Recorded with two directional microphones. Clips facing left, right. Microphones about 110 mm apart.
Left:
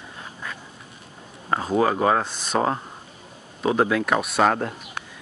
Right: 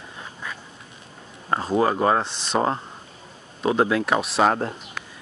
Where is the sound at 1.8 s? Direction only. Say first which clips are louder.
Even; centre (ahead or behind).